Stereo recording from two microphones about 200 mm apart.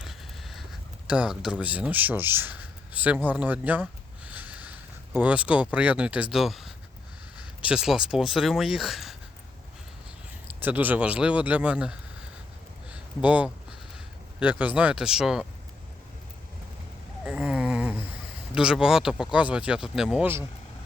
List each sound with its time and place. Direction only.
0.0 s speech: centre (ahead or behind)
10.6 s a man's voice: 10° right (ahead or behind)
12.9 s a sound: 5° right (ahead or behind)
14.3 s speech: 5° right (ahead or behind)
17.2 s a sound: 5° right (ahead or behind)
18.5 s speech: 5° right (ahead or behind)